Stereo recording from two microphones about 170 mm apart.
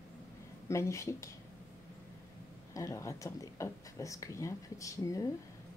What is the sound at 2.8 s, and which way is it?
Speech, 20° left (ahead or behind).